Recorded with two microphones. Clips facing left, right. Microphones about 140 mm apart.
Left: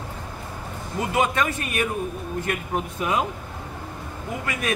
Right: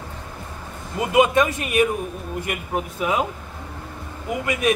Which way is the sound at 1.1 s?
15° right (ahead or behind).